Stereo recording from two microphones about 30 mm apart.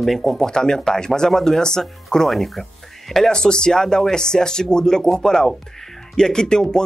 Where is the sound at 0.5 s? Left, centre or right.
Left.